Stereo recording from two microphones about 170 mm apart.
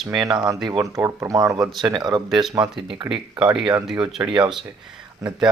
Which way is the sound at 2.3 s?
Centre (ahead or behind).